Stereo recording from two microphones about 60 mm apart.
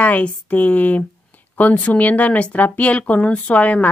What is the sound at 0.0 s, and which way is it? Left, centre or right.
Speech, left.